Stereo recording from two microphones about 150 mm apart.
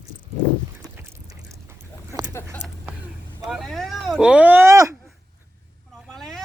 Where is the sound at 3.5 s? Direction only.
Centre (ahead or behind); by 4.9 s 20° right (ahead or behind).